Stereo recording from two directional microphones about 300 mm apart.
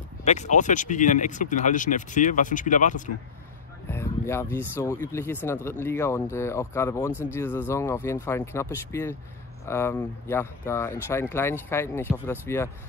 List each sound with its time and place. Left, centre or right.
0.2 s speech: left
3.9 s speech: centre